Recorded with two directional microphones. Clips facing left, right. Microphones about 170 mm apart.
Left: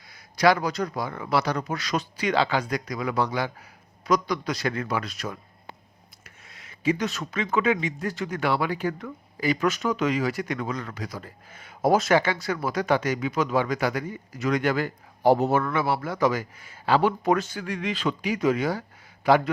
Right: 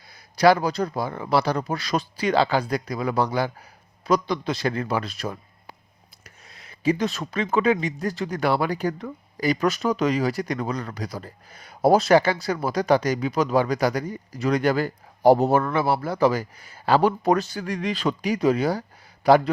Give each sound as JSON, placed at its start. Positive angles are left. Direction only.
{"t": 0.1, "sound": "speech", "side_deg": -35}